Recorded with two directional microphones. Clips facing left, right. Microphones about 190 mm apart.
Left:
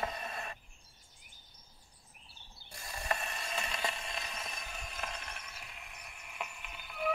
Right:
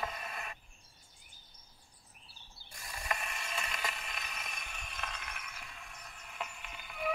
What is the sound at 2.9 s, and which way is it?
Mechanisms, 35° left (ahead or behind).